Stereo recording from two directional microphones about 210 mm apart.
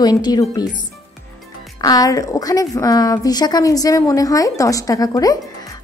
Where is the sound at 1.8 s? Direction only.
15° left (ahead or behind).